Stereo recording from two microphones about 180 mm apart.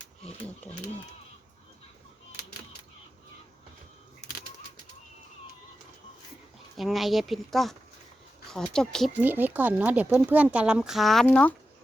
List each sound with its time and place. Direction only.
4.2 s bird: 50° left (ahead or behind)
6.7 s speech: centre (ahead or behind)
9.2 s speech: 10° right (ahead or behind); by 11.5 s 10° left (ahead or behind)